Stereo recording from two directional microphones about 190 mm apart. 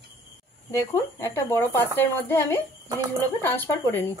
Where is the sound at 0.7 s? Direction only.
15° left (ahead or behind).